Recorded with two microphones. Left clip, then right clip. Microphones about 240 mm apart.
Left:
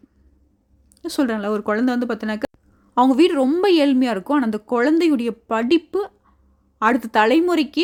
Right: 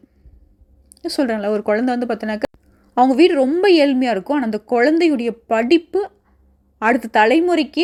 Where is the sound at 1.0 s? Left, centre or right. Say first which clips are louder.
Right 3 dB; centre.